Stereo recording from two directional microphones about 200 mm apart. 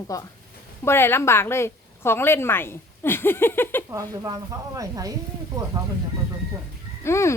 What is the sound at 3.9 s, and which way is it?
Speech, 15° right (ahead or behind).